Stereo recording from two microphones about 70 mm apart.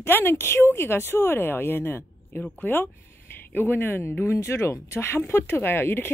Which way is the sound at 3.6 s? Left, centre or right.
Left.